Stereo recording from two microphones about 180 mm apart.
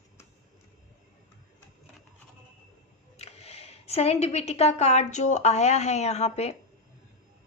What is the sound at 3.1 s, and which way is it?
A woman's voice, 35° left (ahead or behind).